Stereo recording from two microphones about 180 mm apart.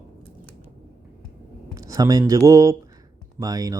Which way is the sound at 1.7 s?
20° right (ahead or behind).